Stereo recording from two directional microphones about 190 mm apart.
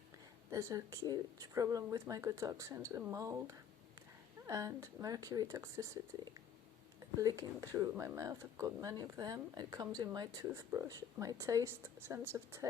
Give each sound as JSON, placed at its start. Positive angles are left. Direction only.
{"t": 0.5, "sound": "speech", "side_deg": -20}